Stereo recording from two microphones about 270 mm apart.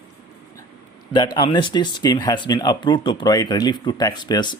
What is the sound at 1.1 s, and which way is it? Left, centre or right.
Speech, centre.